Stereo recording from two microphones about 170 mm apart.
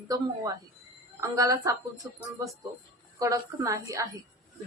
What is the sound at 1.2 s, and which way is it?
Speech, 20° right (ahead or behind).